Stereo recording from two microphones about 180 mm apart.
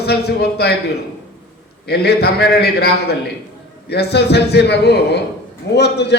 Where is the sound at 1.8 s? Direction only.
60° left (ahead or behind).